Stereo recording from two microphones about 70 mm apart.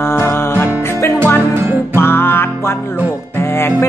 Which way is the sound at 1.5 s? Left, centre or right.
Right.